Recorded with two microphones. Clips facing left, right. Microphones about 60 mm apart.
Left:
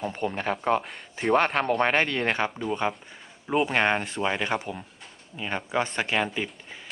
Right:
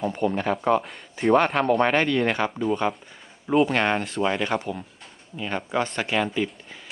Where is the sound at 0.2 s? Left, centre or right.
Right.